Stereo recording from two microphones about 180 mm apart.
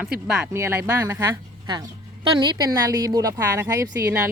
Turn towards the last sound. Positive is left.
turn(degrees=-15)  # may be behind; listen again after turning